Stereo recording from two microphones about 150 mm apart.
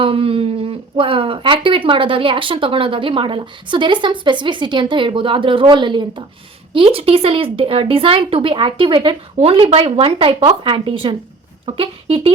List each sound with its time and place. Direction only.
0.0 s speech: 40° right (ahead or behind)